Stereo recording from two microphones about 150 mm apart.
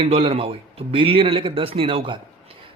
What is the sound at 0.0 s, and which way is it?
Speech, 40° right (ahead or behind).